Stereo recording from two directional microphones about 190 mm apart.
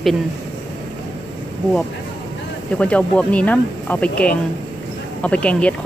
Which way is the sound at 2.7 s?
5° left (ahead or behind).